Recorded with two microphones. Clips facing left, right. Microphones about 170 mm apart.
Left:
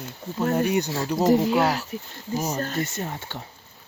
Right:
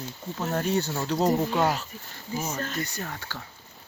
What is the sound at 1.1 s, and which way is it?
Speech, 10° left (ahead or behind).